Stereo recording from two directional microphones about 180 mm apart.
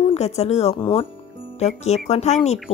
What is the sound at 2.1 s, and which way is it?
Speech, 40° left (ahead or behind).